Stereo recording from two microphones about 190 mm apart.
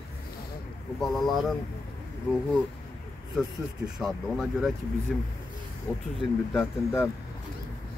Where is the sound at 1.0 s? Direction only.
Centre (ahead or behind).